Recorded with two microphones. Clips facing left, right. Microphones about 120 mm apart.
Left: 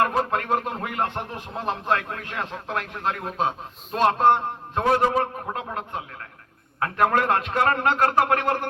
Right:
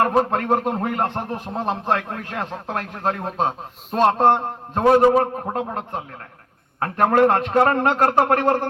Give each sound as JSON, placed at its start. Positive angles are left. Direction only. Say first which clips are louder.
{"t": 0.1, "sound": "speech", "louder": "right 5 dB", "side_deg": -35}